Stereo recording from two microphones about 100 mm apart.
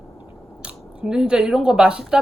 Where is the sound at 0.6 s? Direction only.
10° right (ahead or behind).